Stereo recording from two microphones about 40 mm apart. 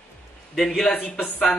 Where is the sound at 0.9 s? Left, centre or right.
Left.